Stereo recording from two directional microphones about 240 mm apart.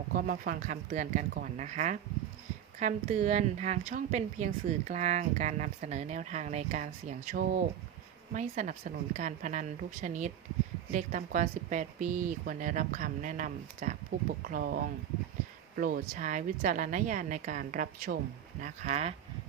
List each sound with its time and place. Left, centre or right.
0.1 s a woman's voice: right
15.8 s a woman's voice: right